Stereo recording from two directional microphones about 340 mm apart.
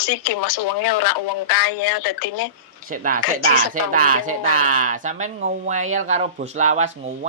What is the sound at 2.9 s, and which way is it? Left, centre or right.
Speech, right.